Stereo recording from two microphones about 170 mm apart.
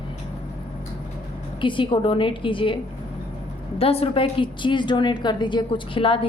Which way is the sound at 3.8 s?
35° left (ahead or behind).